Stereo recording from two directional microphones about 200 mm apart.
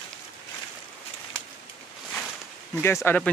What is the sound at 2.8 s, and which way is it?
Speech, 10° left (ahead or behind).